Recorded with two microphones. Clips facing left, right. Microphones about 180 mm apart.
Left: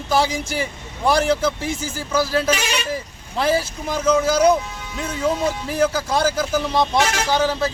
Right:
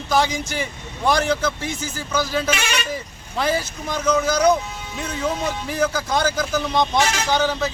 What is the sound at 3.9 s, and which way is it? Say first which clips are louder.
Speech: left 2 dB; 10° left (ahead or behind).